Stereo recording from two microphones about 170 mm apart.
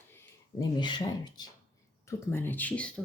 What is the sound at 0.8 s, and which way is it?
Speech, 25° left (ahead or behind).